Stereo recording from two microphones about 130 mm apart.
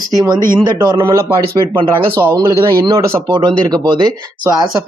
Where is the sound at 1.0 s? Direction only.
20° right (ahead or behind).